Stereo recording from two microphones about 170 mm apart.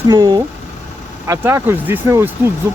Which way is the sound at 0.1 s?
25° right (ahead or behind).